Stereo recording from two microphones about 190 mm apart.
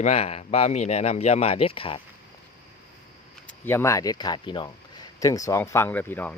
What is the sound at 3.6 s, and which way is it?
Speech, 15° left (ahead or behind).